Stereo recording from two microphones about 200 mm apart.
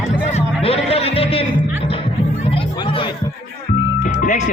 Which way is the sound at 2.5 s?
25° left (ahead or behind).